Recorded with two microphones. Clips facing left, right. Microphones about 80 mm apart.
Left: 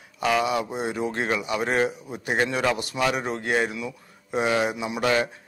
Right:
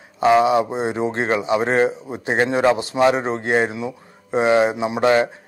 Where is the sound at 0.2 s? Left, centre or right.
Right.